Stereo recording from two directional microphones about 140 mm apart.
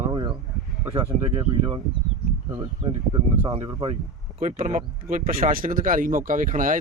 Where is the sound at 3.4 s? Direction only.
40° right (ahead or behind).